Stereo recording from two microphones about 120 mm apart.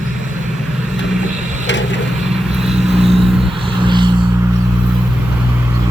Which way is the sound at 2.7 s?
55° right (ahead or behind).